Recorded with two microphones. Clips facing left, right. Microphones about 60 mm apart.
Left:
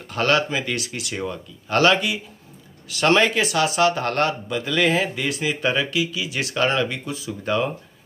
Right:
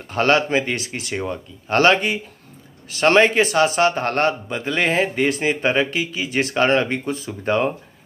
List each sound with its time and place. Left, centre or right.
0.0 s speech: right